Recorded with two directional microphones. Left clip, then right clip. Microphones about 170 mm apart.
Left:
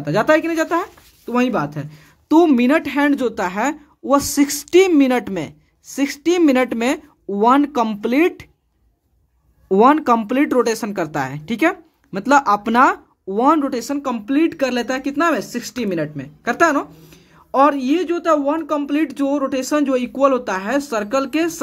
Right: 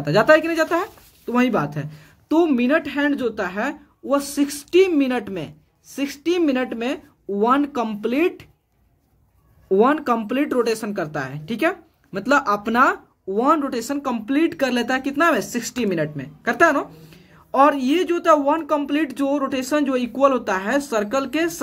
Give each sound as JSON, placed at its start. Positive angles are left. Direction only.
{"t": 0.0, "sound": "speech", "side_deg": 15}
{"t": 9.7, "sound": "speech", "side_deg": 40}